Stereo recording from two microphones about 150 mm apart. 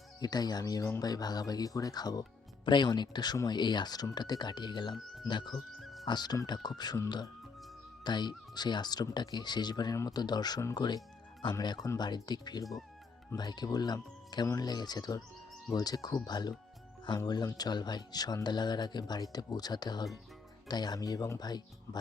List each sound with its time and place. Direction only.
0.2 s speech: 25° left (ahead or behind)
5.5 s music: centre (ahead or behind)
6.1 s speech: 25° left (ahead or behind)